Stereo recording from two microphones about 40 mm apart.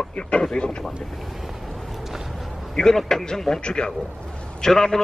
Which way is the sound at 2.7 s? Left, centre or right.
Centre.